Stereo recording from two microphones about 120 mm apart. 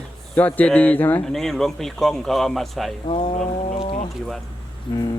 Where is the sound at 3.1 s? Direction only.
50° left (ahead or behind).